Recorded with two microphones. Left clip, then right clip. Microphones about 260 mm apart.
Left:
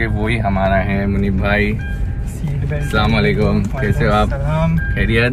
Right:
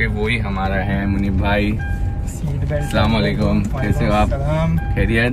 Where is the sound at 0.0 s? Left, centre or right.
Centre.